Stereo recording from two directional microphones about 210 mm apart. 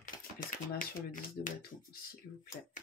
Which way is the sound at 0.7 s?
40° left (ahead or behind).